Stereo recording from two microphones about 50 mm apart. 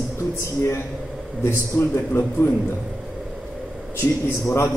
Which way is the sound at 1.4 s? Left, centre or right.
Left.